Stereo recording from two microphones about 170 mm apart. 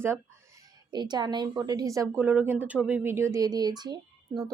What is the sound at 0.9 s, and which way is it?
A woman's voice, 25° right (ahead or behind).